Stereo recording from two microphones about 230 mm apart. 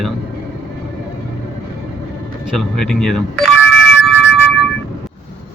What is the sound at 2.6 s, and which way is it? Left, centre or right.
Speech, centre.